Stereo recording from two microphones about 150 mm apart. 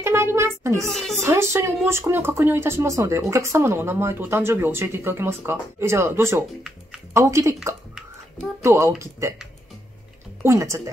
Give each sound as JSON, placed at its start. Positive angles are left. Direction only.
{"t": 0.0, "sound": "a child's voice", "side_deg": -15}
{"t": 10.4, "sound": "speech", "side_deg": -20}